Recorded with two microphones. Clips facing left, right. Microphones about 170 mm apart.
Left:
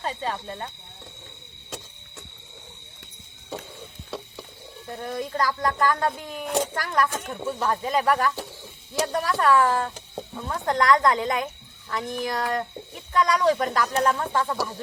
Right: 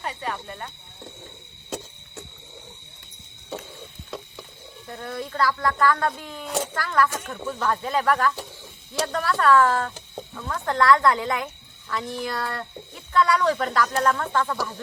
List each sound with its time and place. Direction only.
0.0 s speech: 25° left (ahead or behind)
4.9 s speech: 15° left (ahead or behind)